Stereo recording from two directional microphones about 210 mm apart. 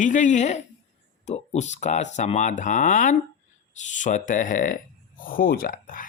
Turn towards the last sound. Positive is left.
turn(degrees=40)  # may be behind; listen again after turning